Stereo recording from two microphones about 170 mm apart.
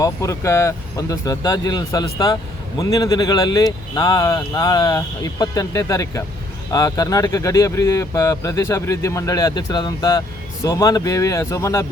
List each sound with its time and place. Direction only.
0.0 s speech: 20° left (ahead or behind)